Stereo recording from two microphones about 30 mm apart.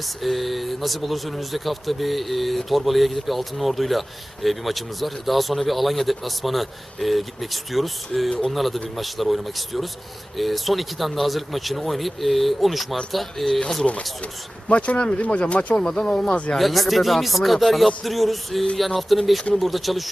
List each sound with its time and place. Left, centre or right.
0.2 s a man's voice: centre
14.7 s speech: left
16.0 s speech: centre
16.6 s a man's voice: centre